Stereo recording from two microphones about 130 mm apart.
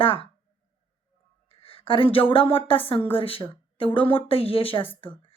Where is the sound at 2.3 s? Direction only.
45° left (ahead or behind).